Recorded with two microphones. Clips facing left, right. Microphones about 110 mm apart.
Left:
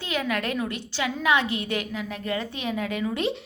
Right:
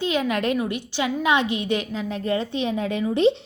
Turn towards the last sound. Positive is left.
turn(degrees=-25)  # may be behind; listen again after turning